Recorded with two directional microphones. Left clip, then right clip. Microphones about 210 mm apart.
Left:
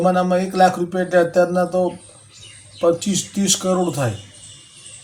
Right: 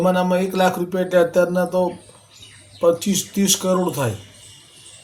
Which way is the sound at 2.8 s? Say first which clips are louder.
Even; 15° right (ahead or behind).